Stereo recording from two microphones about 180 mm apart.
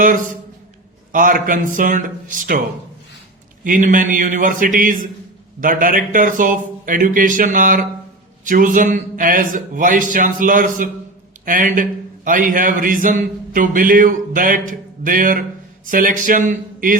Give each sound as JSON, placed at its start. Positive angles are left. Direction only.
{"t": 1.1, "sound": "a man's voice", "side_deg": -50}
{"t": 3.6, "sound": "a man's voice", "side_deg": -45}